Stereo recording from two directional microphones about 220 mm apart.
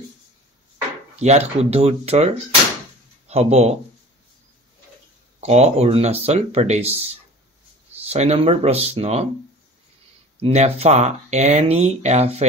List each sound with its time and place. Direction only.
1.1 s speech: 30° right (ahead or behind)
5.4 s speech: 30° right (ahead or behind)
8.1 s speech: 30° right (ahead or behind)
10.4 s speech: 30° right (ahead or behind)